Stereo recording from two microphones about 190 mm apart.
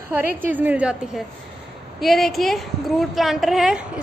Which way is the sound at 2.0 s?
Centre (ahead or behind).